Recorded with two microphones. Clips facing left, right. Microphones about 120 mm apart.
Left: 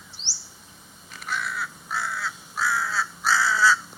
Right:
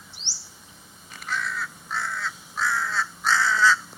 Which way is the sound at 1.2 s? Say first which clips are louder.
Even; 10° left (ahead or behind).